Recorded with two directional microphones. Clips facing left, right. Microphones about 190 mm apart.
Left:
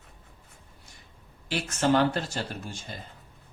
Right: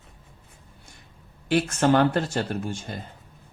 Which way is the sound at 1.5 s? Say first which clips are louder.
Right 4 dB; 55° right (ahead or behind).